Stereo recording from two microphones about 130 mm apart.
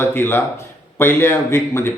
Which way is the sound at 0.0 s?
15° left (ahead or behind).